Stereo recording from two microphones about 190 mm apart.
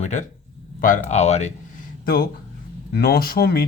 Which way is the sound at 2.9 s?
50° left (ahead or behind).